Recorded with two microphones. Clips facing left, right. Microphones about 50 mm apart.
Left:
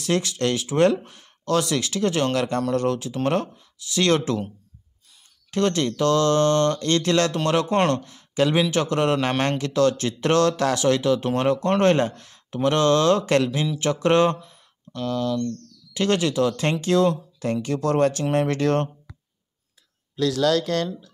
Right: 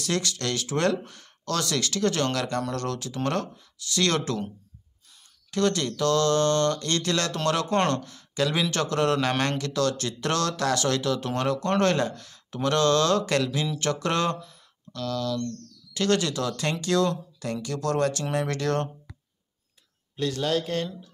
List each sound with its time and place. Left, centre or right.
0.0 s speech: left
5.5 s speech: left
7.4 s speech: centre
20.2 s speech: left